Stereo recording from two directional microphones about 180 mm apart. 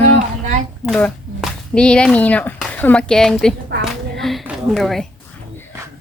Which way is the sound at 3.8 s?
Centre (ahead or behind).